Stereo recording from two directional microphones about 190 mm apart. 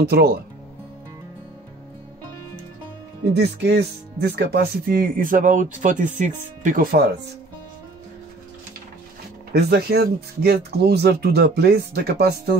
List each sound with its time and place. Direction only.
0.0 s speech: 55° right (ahead or behind)
3.3 s speech: 60° right (ahead or behind)
9.5 s speech: 60° right (ahead or behind)